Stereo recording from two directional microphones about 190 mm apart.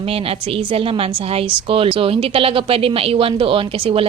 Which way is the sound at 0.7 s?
30° right (ahead or behind).